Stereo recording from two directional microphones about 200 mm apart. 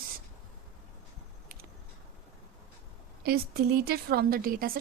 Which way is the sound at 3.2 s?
50° right (ahead or behind).